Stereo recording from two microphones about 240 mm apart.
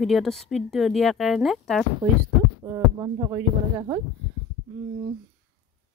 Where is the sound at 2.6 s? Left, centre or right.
Centre.